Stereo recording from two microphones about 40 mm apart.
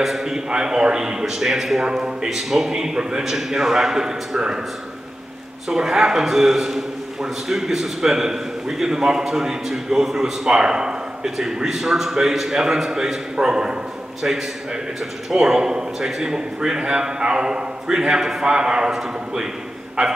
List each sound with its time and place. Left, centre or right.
0.0 s a man's voice: centre
0.3 s a man's voice: centre
5.8 s a man's voice: centre